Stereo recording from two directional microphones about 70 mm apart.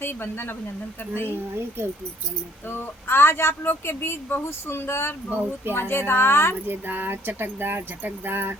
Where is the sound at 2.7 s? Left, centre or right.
Left.